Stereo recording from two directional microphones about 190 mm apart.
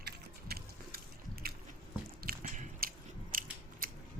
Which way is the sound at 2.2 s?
50° right (ahead or behind).